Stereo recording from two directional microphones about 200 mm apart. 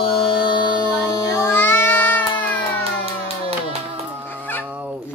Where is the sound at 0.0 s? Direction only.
25° left (ahead or behind); by 2.2 s 10° left (ahead or behind).